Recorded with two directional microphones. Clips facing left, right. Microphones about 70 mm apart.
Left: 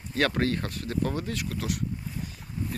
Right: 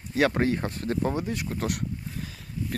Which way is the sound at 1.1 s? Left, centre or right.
Centre.